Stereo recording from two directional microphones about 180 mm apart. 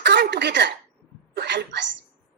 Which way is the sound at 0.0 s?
70° right (ahead or behind).